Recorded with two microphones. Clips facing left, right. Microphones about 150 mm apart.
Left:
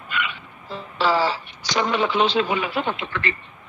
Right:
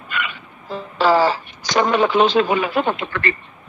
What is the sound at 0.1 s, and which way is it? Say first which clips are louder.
A man's voice: right 1 dB; 45° right (ahead or behind).